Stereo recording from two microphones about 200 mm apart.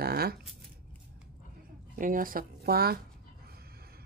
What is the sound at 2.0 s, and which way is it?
Speech, 45° right (ahead or behind).